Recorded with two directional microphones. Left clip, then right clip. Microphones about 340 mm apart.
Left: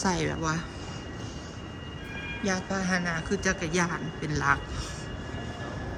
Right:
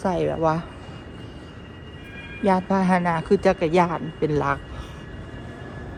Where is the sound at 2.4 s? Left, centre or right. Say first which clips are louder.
Right 10 dB; centre.